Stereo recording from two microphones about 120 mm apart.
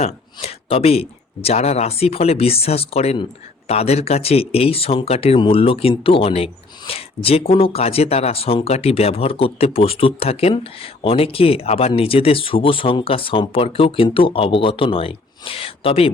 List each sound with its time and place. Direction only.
0.0 s speech: 60° left (ahead or behind)